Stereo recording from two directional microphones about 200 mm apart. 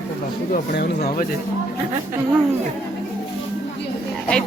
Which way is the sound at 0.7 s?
55° left (ahead or behind).